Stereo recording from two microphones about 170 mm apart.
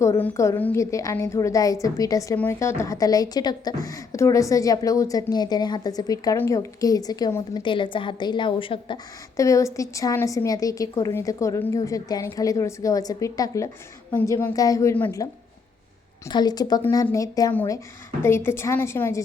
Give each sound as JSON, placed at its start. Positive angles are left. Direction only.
{"t": 0.0, "sound": "a woman's voice", "side_deg": 15}
{"t": 9.4, "sound": "a woman's voice", "side_deg": 20}
{"t": 16.3, "sound": "a woman's voice", "side_deg": 25}